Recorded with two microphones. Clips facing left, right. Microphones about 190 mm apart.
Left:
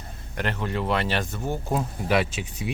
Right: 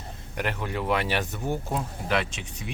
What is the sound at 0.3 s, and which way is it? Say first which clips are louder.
Speech: left 2 dB; 10° right (ahead or behind).